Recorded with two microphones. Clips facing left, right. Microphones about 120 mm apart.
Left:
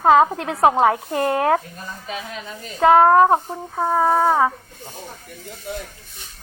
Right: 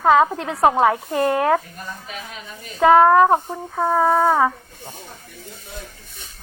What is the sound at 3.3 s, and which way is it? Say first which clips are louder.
Speech: even; 5° left (ahead or behind).